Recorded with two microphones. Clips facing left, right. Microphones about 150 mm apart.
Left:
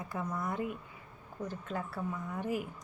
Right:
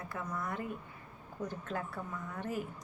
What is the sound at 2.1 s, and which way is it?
Speech, 10° left (ahead or behind).